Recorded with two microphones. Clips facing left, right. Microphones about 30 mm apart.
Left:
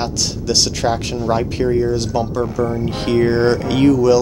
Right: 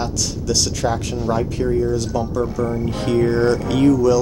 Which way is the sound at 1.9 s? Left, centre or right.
Left.